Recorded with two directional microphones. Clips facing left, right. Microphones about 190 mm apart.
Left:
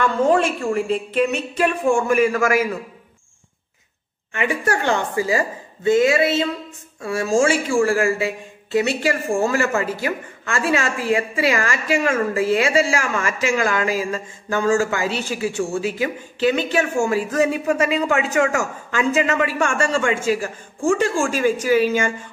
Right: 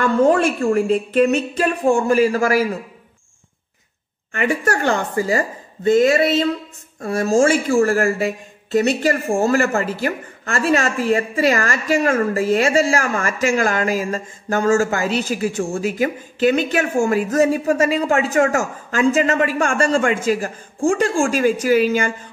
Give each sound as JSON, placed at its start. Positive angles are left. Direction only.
{"t": 0.0, "sound": "a woman's voice", "side_deg": -45}
{"t": 4.3, "sound": "a woman's voice", "side_deg": -45}
{"t": 20.9, "sound": "speech", "side_deg": -50}